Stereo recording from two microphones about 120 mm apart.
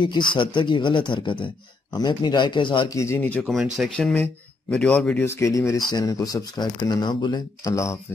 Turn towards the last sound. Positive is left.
turn(degrees=25)  # may be behind; listen again after turning